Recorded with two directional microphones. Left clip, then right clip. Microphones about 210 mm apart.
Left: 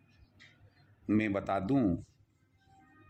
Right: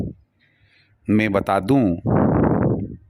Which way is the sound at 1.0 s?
45° right (ahead or behind).